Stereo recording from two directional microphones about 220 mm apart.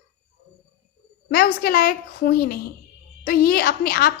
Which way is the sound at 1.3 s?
45° left (ahead or behind).